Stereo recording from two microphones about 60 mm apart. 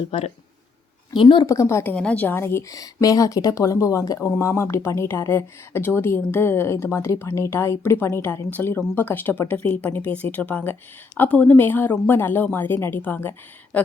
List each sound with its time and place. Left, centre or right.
1.5 s a woman's voice: left
2.0 s a woman's voice: centre
2.2 s speech: left
2.6 s speech: left
4.2 s speech: left
8.4 s speech: left